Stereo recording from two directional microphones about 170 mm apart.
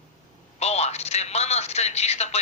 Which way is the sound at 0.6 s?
40° left (ahead or behind).